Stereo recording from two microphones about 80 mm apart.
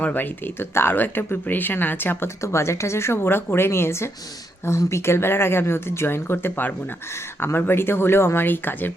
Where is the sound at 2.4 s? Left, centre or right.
Left.